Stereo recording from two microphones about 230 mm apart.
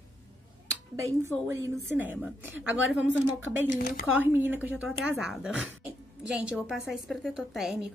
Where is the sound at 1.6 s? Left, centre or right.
Centre.